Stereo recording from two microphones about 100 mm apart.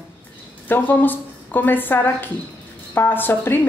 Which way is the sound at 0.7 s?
20° left (ahead or behind).